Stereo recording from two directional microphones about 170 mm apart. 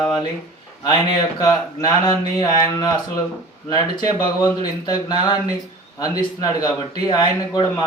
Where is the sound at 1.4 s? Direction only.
20° left (ahead or behind).